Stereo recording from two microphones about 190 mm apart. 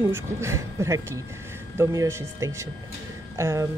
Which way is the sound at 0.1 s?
15° right (ahead or behind).